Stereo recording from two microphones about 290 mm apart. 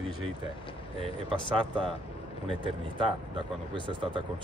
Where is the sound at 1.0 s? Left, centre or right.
Centre.